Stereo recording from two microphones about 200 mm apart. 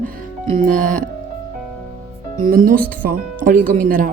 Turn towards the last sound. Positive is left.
turn(degrees=-45)  # may be behind; listen again after turning